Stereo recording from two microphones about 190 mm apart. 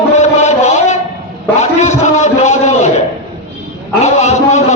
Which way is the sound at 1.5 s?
35° left (ahead or behind).